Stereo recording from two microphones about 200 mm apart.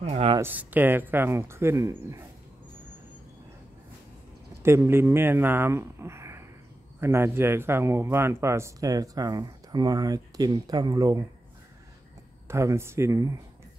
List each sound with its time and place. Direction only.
0.0 s speech: 30° right (ahead or behind)
0.4 s a man's voice: 10° right (ahead or behind)
4.6 s a man's voice: 10° right (ahead or behind)
12.4 s a man's voice: 15° right (ahead or behind)